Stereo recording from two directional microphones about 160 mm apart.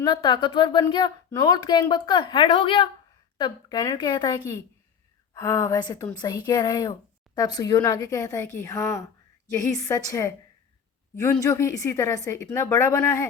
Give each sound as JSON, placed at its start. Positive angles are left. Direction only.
{"t": 0.0, "sound": "speech", "side_deg": 25}